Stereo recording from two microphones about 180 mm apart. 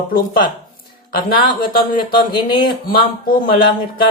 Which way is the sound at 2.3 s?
25° left (ahead or behind).